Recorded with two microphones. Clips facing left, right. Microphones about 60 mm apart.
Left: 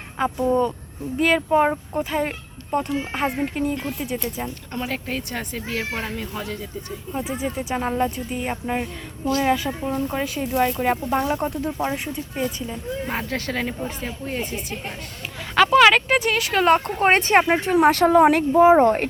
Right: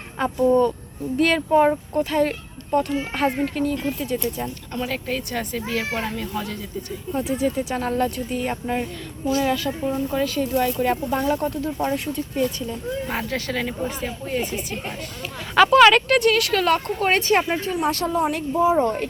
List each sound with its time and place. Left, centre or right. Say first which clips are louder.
0.2 s speech: right 2 dB; centre
13.3 s speech: even; left
15.5 s speech: right 1 dB; centre; by 17.7 s left
17.8 s speech: left 8 dB; left
18.8 s speech: left 4 dB; left